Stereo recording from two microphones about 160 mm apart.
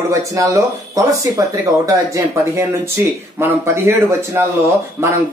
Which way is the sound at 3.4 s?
15° right (ahead or behind).